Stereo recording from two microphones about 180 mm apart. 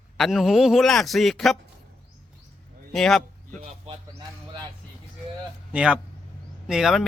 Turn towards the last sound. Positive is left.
turn(degrees=0)  # may be behind; listen again after turning